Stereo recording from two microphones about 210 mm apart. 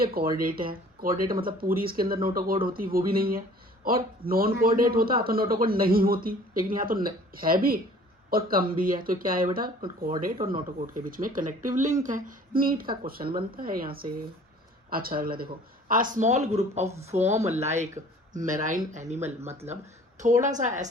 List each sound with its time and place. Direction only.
0.0 s speech: 45° right (ahead or behind)